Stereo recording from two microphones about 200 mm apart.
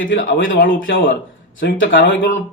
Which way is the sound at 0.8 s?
70° left (ahead or behind).